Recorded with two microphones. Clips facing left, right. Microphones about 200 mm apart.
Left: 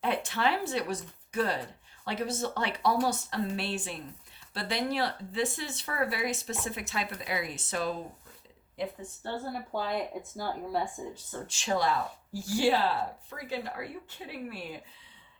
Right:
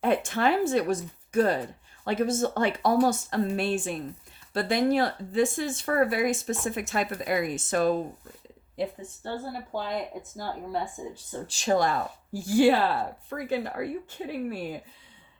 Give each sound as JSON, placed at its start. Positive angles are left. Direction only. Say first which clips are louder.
{"t": 0.0, "sound": "speech", "louder": "right 5 dB", "side_deg": -50}
{"t": 9.5, "sound": "a woman's voice", "louder": "left 1 dB", "side_deg": 0}
{"t": 11.4, "sound": "speech", "louder": "right 5 dB", "side_deg": -40}